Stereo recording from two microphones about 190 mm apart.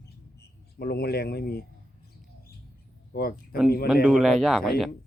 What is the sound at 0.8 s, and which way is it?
Speech, 55° left (ahead or behind).